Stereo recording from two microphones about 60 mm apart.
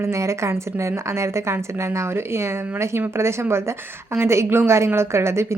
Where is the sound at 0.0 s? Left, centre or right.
Right.